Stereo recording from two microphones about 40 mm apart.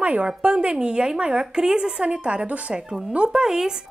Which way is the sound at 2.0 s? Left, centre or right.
Right.